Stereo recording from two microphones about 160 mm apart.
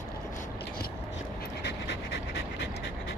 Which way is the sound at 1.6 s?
90° left.